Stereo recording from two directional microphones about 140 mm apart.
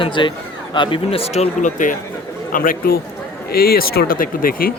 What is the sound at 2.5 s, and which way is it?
Speech, 85° left.